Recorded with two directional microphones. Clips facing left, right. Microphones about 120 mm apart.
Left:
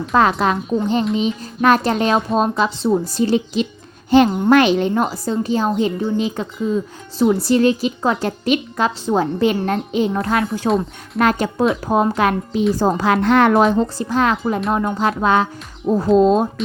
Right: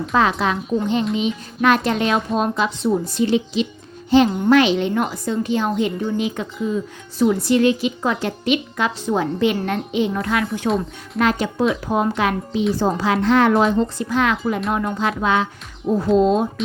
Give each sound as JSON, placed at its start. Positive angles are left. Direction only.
{"t": 0.1, "sound": "a child's voice", "side_deg": 45}
{"t": 11.2, "sound": "a child's voice", "side_deg": 45}
{"t": 13.8, "sound": "a child's voice", "side_deg": 35}